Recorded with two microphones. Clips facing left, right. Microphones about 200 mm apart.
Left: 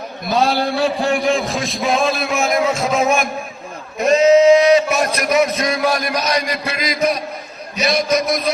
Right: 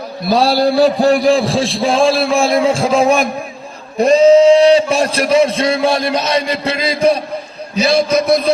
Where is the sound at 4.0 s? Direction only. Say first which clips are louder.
Right 4 dB; 30° right (ahead or behind).